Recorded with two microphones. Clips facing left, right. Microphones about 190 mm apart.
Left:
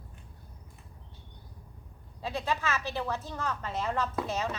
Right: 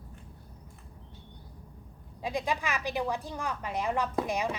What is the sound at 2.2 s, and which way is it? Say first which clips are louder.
A woman's voice: right 1 dB; 15° right (ahead or behind).